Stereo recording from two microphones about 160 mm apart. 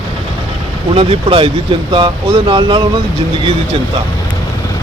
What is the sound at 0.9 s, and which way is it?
Speech, 35° right (ahead or behind).